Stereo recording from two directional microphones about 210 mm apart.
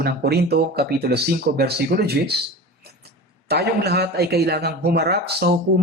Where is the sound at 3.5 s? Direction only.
50° right (ahead or behind).